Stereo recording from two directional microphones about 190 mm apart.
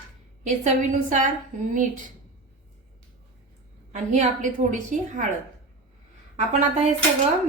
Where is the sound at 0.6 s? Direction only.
40° right (ahead or behind).